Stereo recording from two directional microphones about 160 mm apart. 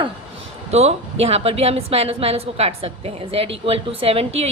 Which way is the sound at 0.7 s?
45° right (ahead or behind).